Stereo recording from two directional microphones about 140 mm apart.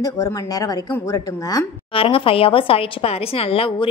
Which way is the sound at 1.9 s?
40° left (ahead or behind).